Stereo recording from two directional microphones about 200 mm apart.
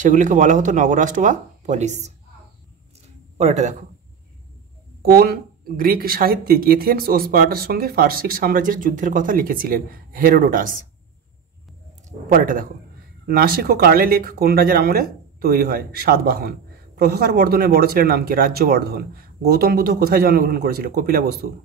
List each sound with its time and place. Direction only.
0.0 s speech: 40° right (ahead or behind)
3.3 s speech: 35° right (ahead or behind)
5.0 s speech: 50° right (ahead or behind)
12.3 s speech: 45° right (ahead or behind)